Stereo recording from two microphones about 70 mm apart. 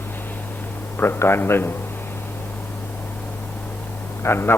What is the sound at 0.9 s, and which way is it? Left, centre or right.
Speech, left.